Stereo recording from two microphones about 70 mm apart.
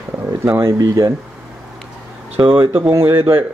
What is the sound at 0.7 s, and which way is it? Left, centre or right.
Speech, right.